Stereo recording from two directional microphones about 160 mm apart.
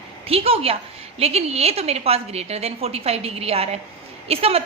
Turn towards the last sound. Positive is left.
turn(degrees=-40)  # may be behind; listen again after turning